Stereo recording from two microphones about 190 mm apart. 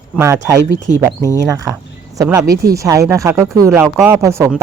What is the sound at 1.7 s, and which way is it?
Speech, 10° right (ahead or behind).